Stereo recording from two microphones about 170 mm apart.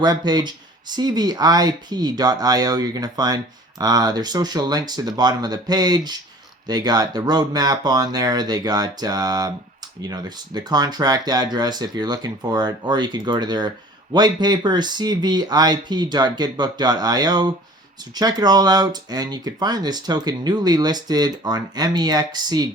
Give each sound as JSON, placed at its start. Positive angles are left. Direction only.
{"t": 0.0, "sound": "speech", "side_deg": -25}